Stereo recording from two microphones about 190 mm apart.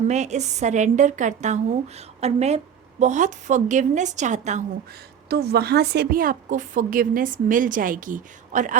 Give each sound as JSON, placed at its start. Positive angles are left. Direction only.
{"t": 0.1, "sound": "a woman's voice", "side_deg": -35}
{"t": 5.3, "sound": "a woman's voice", "side_deg": -60}